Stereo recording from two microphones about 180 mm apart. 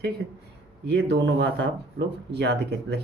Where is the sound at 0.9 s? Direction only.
70° right (ahead or behind).